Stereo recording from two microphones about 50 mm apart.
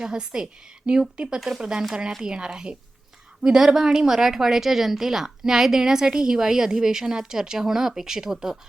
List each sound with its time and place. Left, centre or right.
0.0 s a woman's voice: centre